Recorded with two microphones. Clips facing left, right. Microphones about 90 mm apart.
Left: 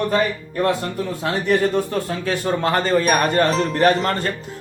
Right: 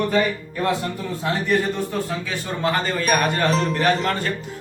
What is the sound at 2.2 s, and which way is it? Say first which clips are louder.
Speech: left 4 dB; 50° left (ahead or behind).